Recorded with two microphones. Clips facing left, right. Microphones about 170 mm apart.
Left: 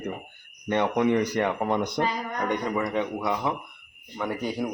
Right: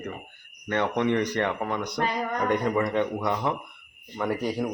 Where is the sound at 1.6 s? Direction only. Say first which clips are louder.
Left 3 dB; 25° left (ahead or behind).